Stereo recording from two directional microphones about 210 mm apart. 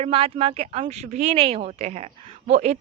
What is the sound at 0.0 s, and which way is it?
Speech, 25° right (ahead or behind).